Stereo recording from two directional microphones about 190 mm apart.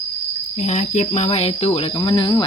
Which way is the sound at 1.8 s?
25° left (ahead or behind).